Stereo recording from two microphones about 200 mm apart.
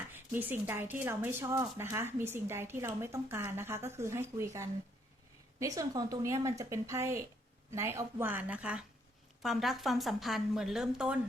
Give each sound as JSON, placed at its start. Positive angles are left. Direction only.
{"t": 0.1, "sound": "a woman's voice", "side_deg": -10}